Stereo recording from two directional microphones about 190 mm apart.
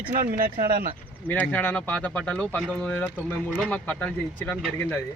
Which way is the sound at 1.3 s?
10° left (ahead or behind).